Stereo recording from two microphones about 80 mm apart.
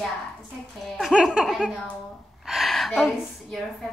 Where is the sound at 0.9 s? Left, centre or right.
Centre.